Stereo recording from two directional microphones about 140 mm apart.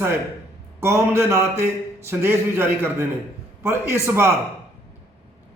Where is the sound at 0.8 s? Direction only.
20° right (ahead or behind).